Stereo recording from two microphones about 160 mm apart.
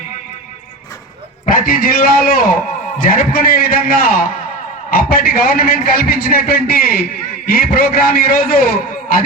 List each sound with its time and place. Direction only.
1.5 s a man's voice: 60° left (ahead or behind)